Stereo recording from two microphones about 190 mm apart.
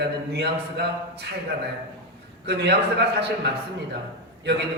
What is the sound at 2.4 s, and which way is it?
A man's voice, 60° right (ahead or behind).